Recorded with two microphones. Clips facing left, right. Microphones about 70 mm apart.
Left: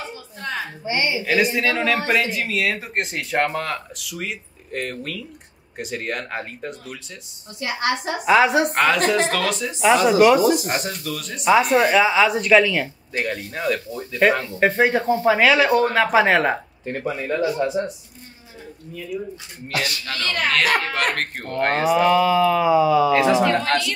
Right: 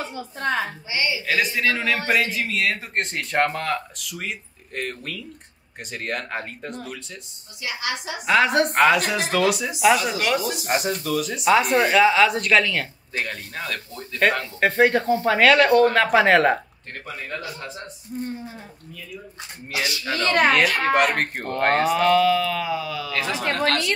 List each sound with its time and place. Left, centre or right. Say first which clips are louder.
0.8 s a woman's voice: left 3 dB; left
1.2 s speech: left 3 dB; centre
7.6 s a woman's voice: left 6 dB; left
8.3 s speech: left 2 dB; centre
10.0 s speech: left 10 dB; centre
20.2 s speech: right 6 dB; right
20.9 s speech: right 4 dB; centre
23.1 s speech: left 8 dB; left